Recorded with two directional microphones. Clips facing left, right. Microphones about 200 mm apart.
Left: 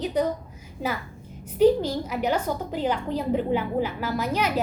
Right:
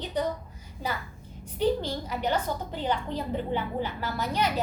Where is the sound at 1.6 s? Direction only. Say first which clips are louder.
Left 7 dB; 5° left (ahead or behind).